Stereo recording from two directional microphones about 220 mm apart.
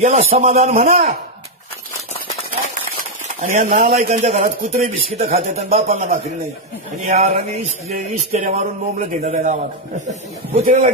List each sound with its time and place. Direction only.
0.0 s a man's voice: 30° right (ahead or behind)
3.4 s a man's voice: 40° right (ahead or behind)